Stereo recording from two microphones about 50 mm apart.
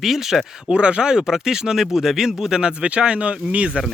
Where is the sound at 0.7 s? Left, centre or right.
Centre.